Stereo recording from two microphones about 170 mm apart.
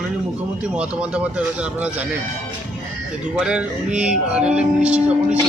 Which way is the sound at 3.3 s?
5° right (ahead or behind).